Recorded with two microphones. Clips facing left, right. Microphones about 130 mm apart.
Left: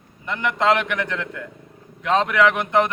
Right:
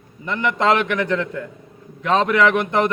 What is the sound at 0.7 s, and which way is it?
Speech, 40° right (ahead or behind).